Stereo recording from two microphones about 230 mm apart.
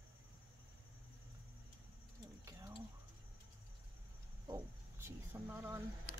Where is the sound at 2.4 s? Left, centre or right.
Centre.